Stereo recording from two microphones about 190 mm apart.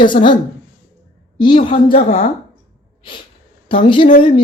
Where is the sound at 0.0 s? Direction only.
25° left (ahead or behind).